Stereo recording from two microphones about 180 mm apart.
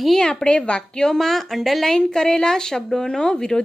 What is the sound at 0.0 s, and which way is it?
A woman's voice, centre (ahead or behind).